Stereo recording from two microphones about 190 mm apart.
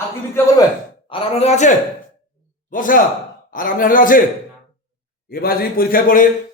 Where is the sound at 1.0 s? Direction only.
30° left (ahead or behind); by 4.2 s 45° left (ahead or behind).